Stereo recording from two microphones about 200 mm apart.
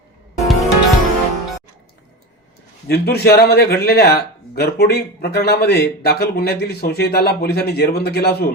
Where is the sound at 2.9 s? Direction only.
50° left (ahead or behind).